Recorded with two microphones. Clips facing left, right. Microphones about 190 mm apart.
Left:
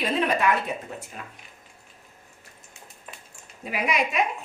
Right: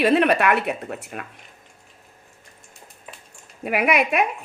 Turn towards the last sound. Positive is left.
turn(degrees=-65)  # may be behind; listen again after turning